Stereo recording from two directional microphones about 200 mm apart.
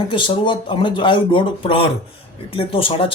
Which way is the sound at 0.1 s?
25° left (ahead or behind).